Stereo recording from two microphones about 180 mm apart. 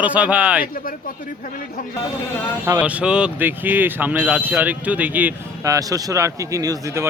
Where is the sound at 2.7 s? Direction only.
10° right (ahead or behind).